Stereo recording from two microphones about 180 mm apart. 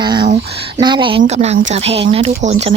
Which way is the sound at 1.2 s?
40° right (ahead or behind).